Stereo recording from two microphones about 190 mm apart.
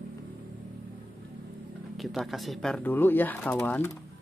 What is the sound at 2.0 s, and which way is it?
Speech, centre (ahead or behind).